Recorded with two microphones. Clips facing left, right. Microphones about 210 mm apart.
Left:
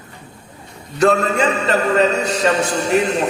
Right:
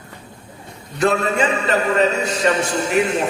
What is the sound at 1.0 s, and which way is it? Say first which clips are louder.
A man's voice: left 3 dB; 40° left (ahead or behind).